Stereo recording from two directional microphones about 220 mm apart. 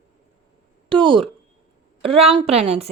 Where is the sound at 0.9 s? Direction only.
20° right (ahead or behind).